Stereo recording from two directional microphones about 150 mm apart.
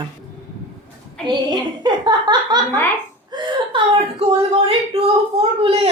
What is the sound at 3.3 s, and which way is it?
Laughter, 35° right (ahead or behind).